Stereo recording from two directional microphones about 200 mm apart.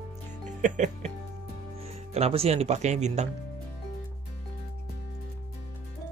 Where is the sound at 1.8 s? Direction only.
30° right (ahead or behind).